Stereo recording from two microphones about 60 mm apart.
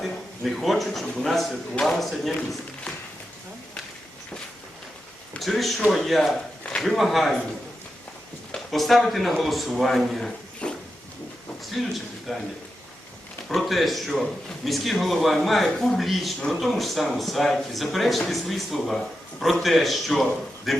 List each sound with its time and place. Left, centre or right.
0.0 s a man's voice: centre
5.4 s a man's voice: centre
8.5 s a man's voice: centre
10.6 s a sound: centre
11.8 s a man's voice: centre
13.5 s a man's voice: centre